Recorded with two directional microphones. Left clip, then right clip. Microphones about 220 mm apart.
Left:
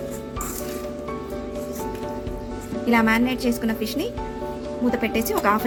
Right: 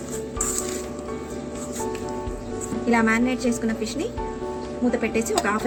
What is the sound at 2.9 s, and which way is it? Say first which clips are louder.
A woman's voice: left 1 dB; 30° left (ahead or behind).